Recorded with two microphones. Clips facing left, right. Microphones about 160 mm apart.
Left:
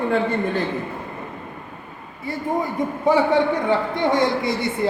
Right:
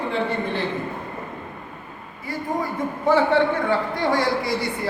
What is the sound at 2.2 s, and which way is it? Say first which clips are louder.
A man's voice: left 2 dB; 20° left (ahead or behind).